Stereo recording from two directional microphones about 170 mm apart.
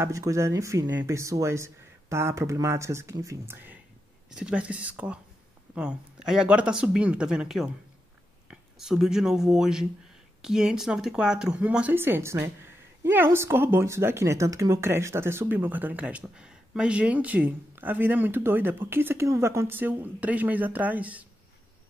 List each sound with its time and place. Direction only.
0.0 s speech: 15° right (ahead or behind)
4.3 s speech: 5° right (ahead or behind)